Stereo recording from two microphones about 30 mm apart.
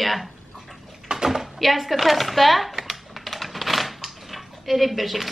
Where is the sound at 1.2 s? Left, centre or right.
Centre.